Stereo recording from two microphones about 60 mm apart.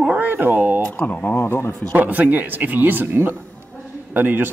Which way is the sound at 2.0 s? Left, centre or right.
Right.